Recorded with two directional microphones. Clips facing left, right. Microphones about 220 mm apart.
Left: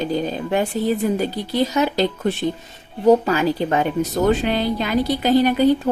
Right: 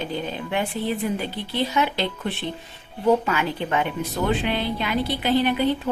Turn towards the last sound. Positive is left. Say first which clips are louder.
# left 5 dB
turn(degrees=40)  # may be behind; listen again after turning